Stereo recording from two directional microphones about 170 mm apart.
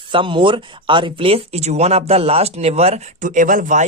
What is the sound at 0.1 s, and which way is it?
Speech, 30° right (ahead or behind).